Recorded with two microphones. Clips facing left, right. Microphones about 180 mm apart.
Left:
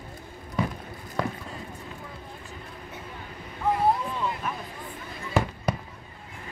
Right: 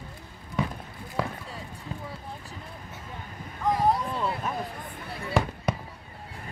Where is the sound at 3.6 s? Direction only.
5° left (ahead or behind).